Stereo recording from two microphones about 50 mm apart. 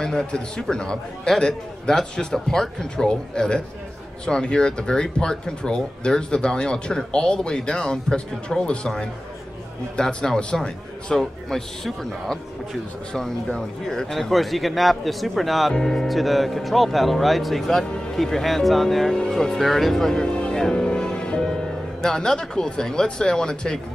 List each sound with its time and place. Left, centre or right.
0.0 s speech: centre
11.1 s speech: centre
19.7 s music: centre
22.0 s speech: centre